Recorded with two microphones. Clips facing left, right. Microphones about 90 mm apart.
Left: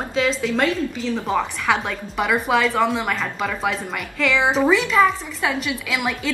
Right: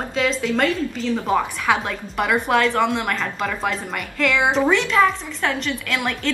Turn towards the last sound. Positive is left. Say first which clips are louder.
# even
turn(degrees=5)  # may be behind; listen again after turning